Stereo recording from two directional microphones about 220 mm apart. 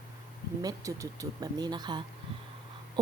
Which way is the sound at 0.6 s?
15° right (ahead or behind).